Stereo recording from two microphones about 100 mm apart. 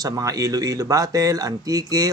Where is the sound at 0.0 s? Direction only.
40° right (ahead or behind).